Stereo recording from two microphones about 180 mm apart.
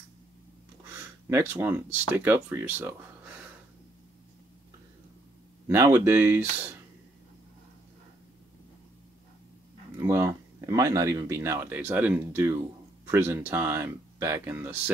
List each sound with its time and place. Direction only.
1.3 s speech: 15° right (ahead or behind)
5.7 s speech: 15° right (ahead or behind)
9.9 s speech: 15° right (ahead or behind)